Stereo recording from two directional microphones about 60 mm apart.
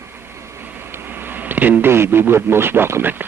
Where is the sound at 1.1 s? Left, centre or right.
Right.